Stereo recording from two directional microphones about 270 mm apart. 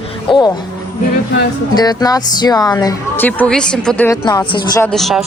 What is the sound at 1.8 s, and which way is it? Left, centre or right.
Speech, centre.